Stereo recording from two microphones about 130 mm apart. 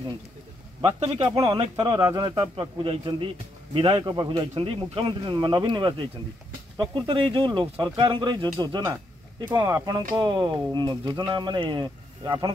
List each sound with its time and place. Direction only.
0.7 s speech: 45° right (ahead or behind)
1.2 s speech: 30° right (ahead or behind); by 4.0 s 45° right (ahead or behind)
4.0 s speech: 35° right (ahead or behind)